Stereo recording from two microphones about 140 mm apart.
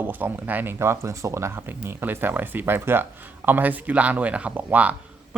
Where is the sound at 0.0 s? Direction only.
15° right (ahead or behind).